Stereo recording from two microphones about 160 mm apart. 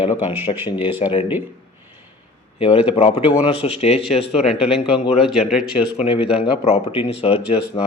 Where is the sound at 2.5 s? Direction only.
35° left (ahead or behind).